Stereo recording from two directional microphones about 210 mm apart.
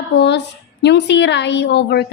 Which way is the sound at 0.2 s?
55° left (ahead or behind).